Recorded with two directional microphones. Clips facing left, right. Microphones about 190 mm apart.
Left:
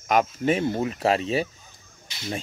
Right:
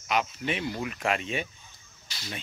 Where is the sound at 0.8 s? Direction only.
35° left (ahead or behind).